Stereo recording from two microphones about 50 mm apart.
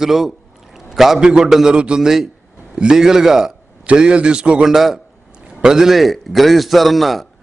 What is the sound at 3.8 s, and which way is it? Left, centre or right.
A man's voice, right.